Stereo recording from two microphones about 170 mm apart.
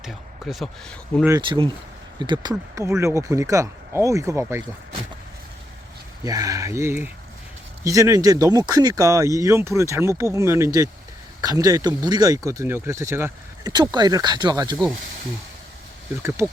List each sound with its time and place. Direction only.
0.0 s speech: centre (ahead or behind)
1.4 s speech: 30° right (ahead or behind)
6.2 s speech: 20° right (ahead or behind)